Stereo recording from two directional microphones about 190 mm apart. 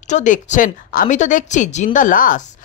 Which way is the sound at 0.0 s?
40° left (ahead or behind).